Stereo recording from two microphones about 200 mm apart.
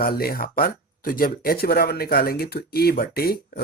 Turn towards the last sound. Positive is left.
turn(degrees=50)  # may be behind; listen again after turning